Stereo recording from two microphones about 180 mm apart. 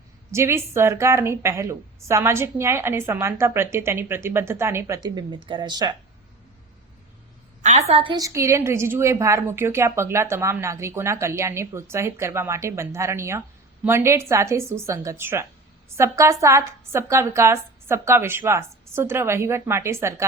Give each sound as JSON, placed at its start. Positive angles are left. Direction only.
{"t": 0.3, "sound": "a woman's voice", "side_deg": -15}
{"t": 7.6, "sound": "a woman's voice", "side_deg": -40}